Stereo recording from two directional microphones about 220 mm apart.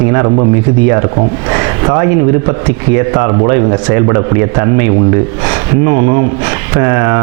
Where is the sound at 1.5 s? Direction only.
20° right (ahead or behind).